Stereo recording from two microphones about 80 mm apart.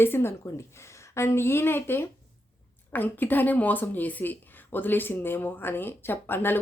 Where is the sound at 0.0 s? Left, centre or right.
Left.